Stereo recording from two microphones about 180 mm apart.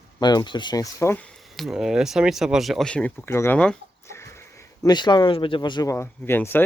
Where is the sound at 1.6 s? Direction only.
5° right (ahead or behind).